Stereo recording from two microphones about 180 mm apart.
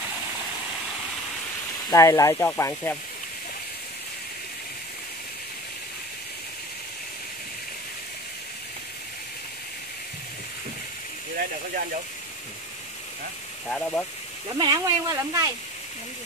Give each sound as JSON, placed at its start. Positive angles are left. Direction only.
{"t": 1.9, "sound": "speech", "side_deg": 15}
{"t": 13.7, "sound": "speech", "side_deg": 5}
{"t": 14.6, "sound": "speech", "side_deg": -20}